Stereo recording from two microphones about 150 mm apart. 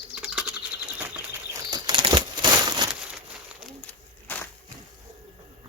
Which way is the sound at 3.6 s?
Centre (ahead or behind).